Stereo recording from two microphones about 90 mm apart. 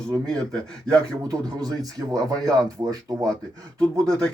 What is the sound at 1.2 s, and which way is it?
Speech, 45° right (ahead or behind).